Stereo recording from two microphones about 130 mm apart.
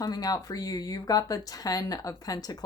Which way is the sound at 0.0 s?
30° left (ahead or behind).